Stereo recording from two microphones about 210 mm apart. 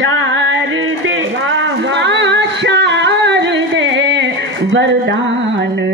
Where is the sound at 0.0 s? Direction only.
65° right (ahead or behind).